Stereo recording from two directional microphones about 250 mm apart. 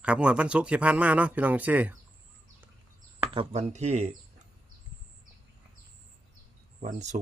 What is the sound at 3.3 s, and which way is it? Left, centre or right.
Speech, right.